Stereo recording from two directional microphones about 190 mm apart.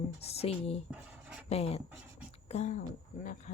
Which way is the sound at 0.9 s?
5° right (ahead or behind).